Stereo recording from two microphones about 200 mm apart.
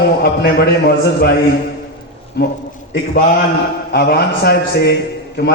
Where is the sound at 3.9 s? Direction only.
50° left (ahead or behind).